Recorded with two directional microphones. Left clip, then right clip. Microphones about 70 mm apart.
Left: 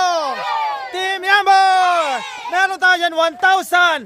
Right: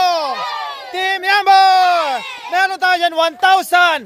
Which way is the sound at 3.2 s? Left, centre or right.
Right.